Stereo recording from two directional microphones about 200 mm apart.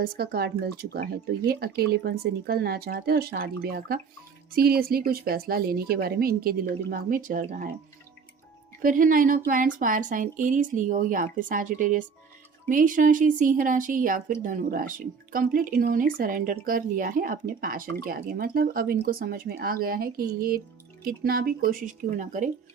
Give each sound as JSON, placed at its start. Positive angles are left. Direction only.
{"t": 0.0, "sound": "speech", "side_deg": -50}
{"t": 8.8, "sound": "speech", "side_deg": -40}